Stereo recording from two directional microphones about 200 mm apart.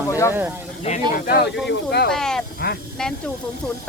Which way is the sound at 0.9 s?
30° left (ahead or behind).